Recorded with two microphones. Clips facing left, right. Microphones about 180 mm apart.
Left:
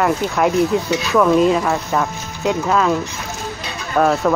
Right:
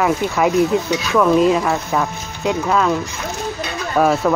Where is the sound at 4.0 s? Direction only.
5° right (ahead or behind).